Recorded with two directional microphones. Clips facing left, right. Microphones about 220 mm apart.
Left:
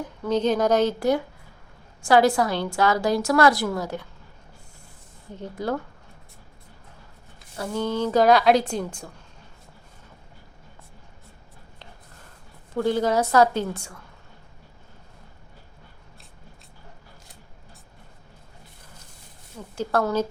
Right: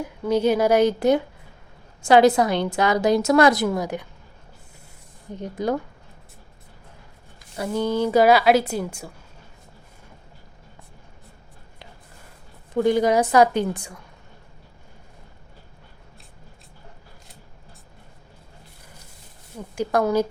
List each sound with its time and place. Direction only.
0.0 s a woman's voice: 10° right (ahead or behind)
5.3 s a woman's voice: 15° right (ahead or behind)
7.5 s a woman's voice: 15° right (ahead or behind)
12.7 s a woman's voice: 15° right (ahead or behind)
19.7 s a woman's voice: 15° right (ahead or behind)